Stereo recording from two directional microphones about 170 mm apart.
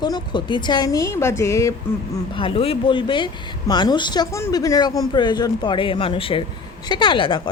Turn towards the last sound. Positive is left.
turn(degrees=30)  # may be behind; listen again after turning